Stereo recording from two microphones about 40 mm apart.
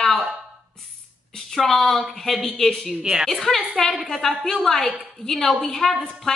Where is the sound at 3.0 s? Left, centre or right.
Centre.